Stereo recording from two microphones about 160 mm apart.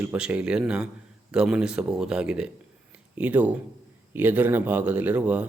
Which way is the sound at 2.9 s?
10° right (ahead or behind).